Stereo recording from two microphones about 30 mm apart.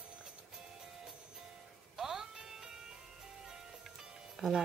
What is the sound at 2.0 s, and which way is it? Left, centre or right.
Music, centre.